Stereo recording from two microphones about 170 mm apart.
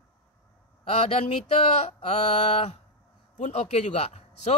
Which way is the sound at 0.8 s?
35° left (ahead or behind).